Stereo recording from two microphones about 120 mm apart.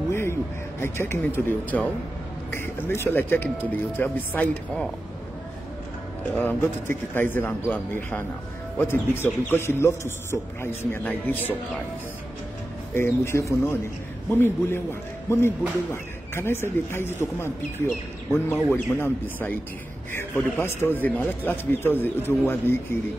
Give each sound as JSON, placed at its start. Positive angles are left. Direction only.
{"t": 0.1, "sound": "a man's voice", "side_deg": 20}
{"t": 6.3, "sound": "a man's voice", "side_deg": 15}
{"t": 12.9, "sound": "a man's voice", "side_deg": 20}